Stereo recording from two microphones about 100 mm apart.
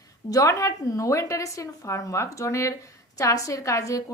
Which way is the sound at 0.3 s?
35° left (ahead or behind).